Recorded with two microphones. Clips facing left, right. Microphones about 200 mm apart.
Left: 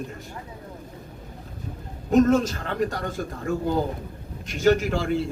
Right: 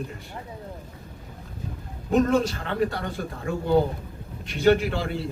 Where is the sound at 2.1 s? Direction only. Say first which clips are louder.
Left 3 dB; 40° left (ahead or behind).